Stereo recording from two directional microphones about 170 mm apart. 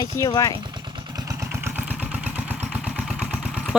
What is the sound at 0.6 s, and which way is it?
Vehicle, 25° right (ahead or behind).